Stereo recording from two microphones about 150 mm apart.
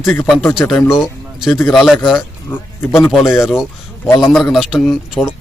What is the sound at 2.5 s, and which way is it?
Speech, 15° left (ahead or behind).